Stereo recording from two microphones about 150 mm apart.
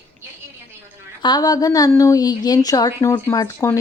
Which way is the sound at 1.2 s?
25° left (ahead or behind).